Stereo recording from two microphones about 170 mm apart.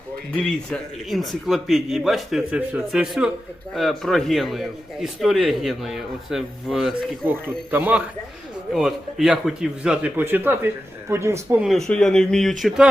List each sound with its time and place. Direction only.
0.3 s a man's voice: centre (ahead or behind)
7.4 s a man's voice: 10° right (ahead or behind)
11.6 s a man's voice: centre (ahead or behind)